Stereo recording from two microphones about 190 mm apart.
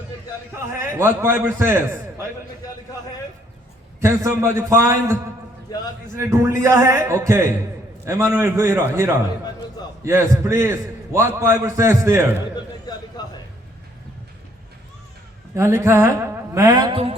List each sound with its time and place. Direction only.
0.5 s a man's voice: 15° right (ahead or behind)
4.0 s a man's voice: 15° right (ahead or behind)
5.7 s a man's voice: 20° left (ahead or behind)
6.1 s a man's voice: 15° right (ahead or behind)
12.5 s a sound: 20° left (ahead or behind)
15.5 s a man's voice: 15° right (ahead or behind)